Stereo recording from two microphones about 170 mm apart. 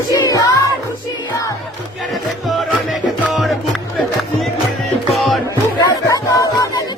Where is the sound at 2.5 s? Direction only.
Centre (ahead or behind).